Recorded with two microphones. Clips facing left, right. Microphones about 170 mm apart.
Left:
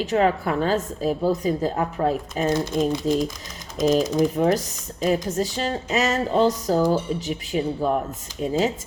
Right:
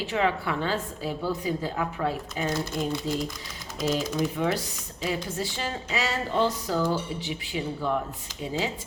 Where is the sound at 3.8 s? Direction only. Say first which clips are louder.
Left 7 dB; 45° left (ahead or behind).